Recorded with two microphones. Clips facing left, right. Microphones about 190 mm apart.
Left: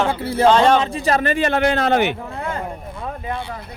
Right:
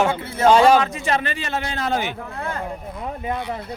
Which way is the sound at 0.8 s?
35° left (ahead or behind).